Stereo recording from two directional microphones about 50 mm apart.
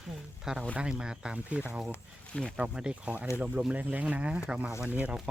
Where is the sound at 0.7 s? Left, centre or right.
Right.